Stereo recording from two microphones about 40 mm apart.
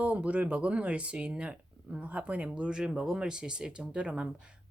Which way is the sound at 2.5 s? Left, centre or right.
Right.